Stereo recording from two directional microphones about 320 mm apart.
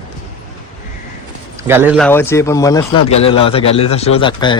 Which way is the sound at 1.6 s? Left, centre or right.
Centre.